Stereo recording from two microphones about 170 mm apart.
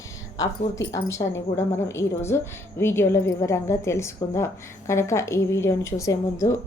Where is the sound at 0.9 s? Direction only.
15° left (ahead or behind).